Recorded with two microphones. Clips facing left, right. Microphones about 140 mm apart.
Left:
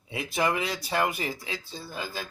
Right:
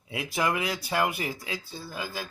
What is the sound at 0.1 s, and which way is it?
Speech, 5° right (ahead or behind).